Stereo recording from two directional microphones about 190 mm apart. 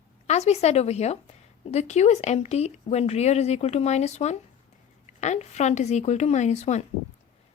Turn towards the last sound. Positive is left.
turn(degrees=35)  # may be behind; listen again after turning